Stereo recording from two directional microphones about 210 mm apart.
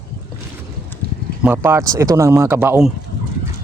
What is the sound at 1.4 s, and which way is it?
Speech, 10° right (ahead or behind).